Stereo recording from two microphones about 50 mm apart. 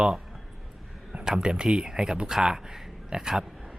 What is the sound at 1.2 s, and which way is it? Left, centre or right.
Speech, centre.